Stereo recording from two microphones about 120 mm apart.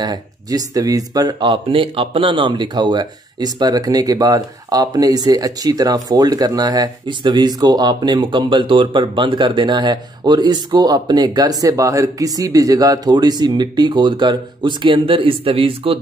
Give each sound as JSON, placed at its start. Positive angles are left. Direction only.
{"t": 0.0, "sound": "speech", "side_deg": -35}